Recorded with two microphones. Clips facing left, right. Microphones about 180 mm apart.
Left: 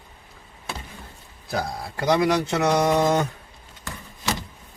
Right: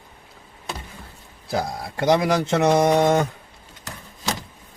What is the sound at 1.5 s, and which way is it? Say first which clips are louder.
Speech: right 2 dB; 25° right (ahead or behind).